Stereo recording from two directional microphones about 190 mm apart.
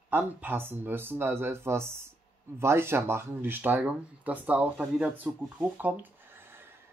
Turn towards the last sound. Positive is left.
turn(degrees=-10)  # may be behind; listen again after turning